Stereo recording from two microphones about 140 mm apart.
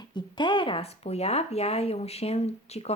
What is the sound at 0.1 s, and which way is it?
Speech, 35° left (ahead or behind).